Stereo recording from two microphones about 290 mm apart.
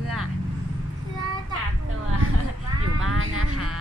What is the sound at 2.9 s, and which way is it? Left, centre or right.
Music, right.